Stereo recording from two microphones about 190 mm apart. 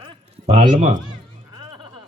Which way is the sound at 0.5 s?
40° right (ahead or behind).